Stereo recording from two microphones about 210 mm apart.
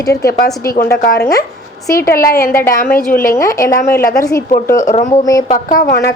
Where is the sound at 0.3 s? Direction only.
45° left (ahead or behind).